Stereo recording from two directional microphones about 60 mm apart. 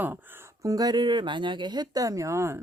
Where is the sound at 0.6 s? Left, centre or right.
Right.